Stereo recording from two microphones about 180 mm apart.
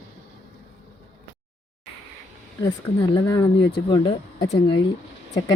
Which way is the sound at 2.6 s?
25° left (ahead or behind).